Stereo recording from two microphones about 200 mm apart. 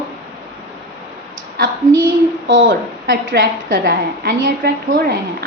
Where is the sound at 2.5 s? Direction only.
70° right (ahead or behind).